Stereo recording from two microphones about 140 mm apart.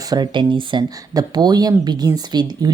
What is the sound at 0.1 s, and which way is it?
Speech, 30° right (ahead or behind).